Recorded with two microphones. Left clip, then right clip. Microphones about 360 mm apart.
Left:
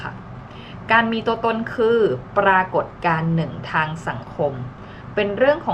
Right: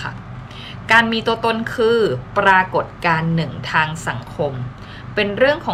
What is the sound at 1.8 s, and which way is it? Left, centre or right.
Speech, centre.